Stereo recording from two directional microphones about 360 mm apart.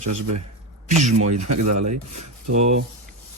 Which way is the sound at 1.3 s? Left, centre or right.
Right.